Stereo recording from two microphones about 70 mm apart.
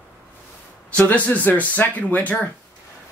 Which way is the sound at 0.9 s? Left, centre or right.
Left.